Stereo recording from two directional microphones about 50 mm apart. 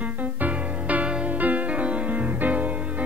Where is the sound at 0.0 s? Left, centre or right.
Right.